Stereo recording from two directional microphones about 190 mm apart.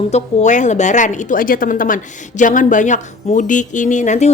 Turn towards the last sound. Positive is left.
turn(degrees=40)  # may be behind; listen again after turning